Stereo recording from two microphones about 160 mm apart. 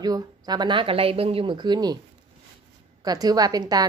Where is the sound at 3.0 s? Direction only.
25° right (ahead or behind).